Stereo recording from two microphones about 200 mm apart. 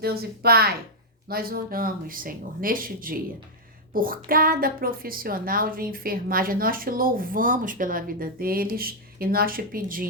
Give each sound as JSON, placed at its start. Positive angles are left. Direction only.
{"t": 0.0, "sound": "a woman's voice", "side_deg": -50}